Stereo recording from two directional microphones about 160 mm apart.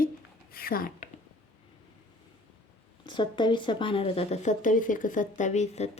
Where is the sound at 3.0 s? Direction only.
30° left (ahead or behind).